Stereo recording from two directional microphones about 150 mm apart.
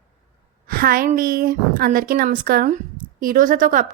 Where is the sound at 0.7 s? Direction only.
70° right (ahead or behind).